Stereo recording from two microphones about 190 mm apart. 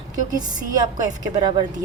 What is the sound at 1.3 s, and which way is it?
Speech, 20° right (ahead or behind).